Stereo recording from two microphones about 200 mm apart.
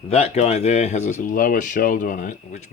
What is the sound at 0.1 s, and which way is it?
Speech, 35° left (ahead or behind).